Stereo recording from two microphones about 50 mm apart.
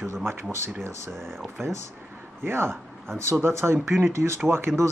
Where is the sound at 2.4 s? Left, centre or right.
Right.